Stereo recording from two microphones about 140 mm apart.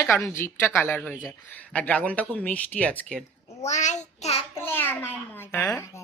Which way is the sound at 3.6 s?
55° left (ahead or behind).